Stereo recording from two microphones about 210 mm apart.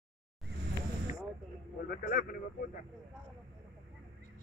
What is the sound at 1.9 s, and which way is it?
Speech, 45° left (ahead or behind).